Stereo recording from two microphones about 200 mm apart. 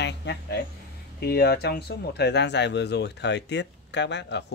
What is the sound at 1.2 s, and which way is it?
Speech, 55° left (ahead or behind).